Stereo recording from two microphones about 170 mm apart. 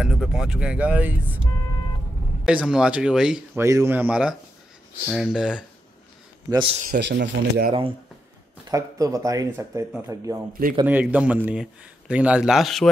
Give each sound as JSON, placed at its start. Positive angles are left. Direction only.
{"t": 0.0, "sound": "speech", "side_deg": -5}
{"t": 2.4, "sound": "speech", "side_deg": -5}
{"t": 3.5, "sound": "speech", "side_deg": -15}
{"t": 6.5, "sound": "speech", "side_deg": -30}
{"t": 7.2, "sound": "speech", "side_deg": -60}
{"t": 8.6, "sound": "speech", "side_deg": -20}
{"t": 10.5, "sound": "speech", "side_deg": -55}
{"t": 10.9, "sound": "speech", "side_deg": -10}